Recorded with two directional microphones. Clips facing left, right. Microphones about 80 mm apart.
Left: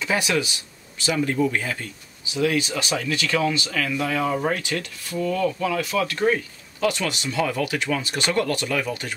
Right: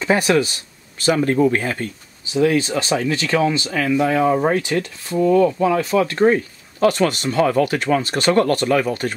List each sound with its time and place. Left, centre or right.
0.0 s speech: right
2.3 s speech: right